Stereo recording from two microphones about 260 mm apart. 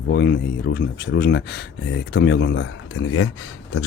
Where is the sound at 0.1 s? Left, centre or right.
Left.